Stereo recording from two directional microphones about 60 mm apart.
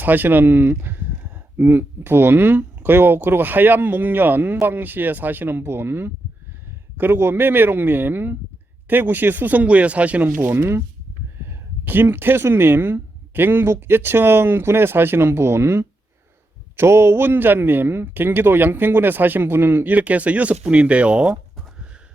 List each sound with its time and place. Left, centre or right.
0.0 s a man's voice: right
10.4 s a man's voice: right; by 21.3 s centre